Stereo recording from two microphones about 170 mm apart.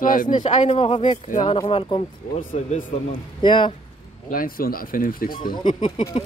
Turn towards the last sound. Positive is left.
turn(degrees=30)  # may be behind; listen again after turning